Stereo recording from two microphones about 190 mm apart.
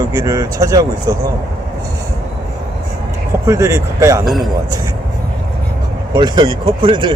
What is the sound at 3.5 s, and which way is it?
Speech, 15° right (ahead or behind).